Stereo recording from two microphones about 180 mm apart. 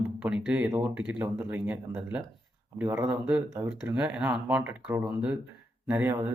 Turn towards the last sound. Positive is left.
turn(degrees=-10)  # may be behind; listen again after turning